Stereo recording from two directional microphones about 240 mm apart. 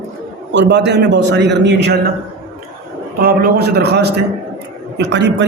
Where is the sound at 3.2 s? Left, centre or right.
Right.